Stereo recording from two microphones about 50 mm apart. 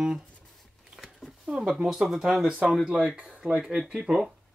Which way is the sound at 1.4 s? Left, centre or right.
Centre.